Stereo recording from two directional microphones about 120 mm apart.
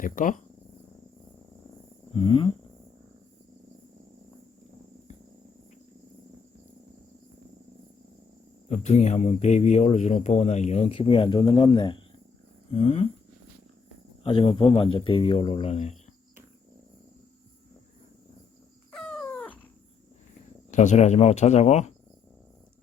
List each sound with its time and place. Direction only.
0.0 s speech: 90° left
2.1 s speech: 45° left (ahead or behind)
8.7 s speech: 70° left (ahead or behind)
10.9 s speech: 45° left (ahead or behind)
12.7 s purr: 60° left (ahead or behind)
14.3 s speech: 45° left (ahead or behind); by 16.0 s 65° left (ahead or behind)
18.9 s a sound: 10° left (ahead or behind)
20.7 s speech: 85° left